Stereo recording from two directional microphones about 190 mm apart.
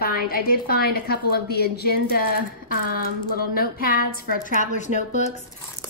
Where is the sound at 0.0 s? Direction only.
50° left (ahead or behind).